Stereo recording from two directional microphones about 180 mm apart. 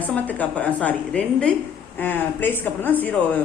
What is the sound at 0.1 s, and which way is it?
A woman's voice, 10° left (ahead or behind).